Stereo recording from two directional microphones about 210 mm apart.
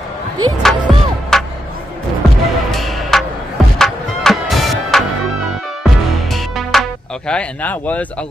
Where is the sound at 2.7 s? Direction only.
Centre (ahead or behind).